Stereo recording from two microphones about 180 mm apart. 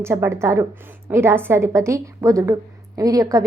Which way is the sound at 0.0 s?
15° right (ahead or behind).